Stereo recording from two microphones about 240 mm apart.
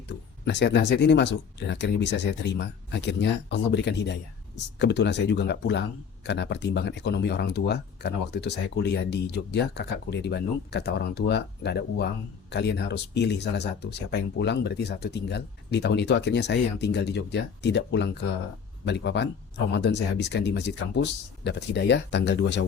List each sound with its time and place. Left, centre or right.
0.1 s speech: left